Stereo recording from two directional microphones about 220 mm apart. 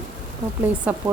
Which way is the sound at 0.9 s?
5° right (ahead or behind).